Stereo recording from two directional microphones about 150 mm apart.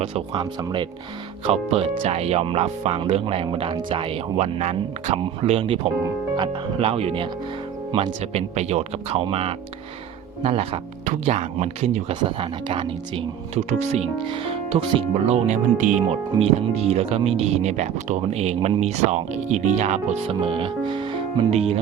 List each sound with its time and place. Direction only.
0.0 s speech: 45° right (ahead or behind)
1.5 s speech: 45° right (ahead or behind)
12.2 s speech: 35° right (ahead or behind); by 16.0 s 55° right (ahead or behind)
16.4 s speech: 45° right (ahead or behind)